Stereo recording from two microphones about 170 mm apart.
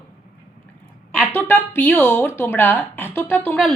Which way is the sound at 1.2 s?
10° left (ahead or behind).